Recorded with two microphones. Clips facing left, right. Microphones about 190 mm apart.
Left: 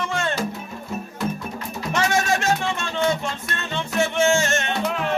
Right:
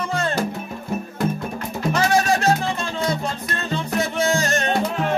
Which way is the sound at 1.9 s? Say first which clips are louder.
Right 3 dB; 35° right (ahead or behind).